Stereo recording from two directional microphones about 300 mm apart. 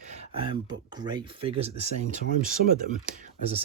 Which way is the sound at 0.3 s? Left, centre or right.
Centre.